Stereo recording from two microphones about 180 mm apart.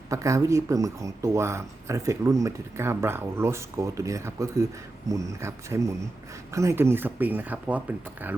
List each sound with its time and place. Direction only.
0.1 s speech: 15° right (ahead or behind)